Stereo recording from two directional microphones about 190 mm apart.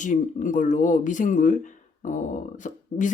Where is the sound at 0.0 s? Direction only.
40° left (ahead or behind).